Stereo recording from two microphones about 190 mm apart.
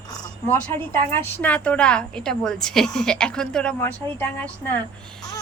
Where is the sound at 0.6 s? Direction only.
10° left (ahead or behind).